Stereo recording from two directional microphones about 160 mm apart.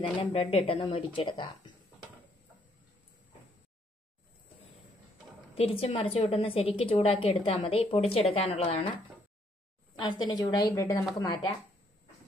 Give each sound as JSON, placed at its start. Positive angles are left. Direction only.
{"t": 0.2, "sound": "a woman's voice", "side_deg": 35}
{"t": 5.5, "sound": "a woman's voice", "side_deg": 35}
{"t": 9.9, "sound": "a woman's voice", "side_deg": 25}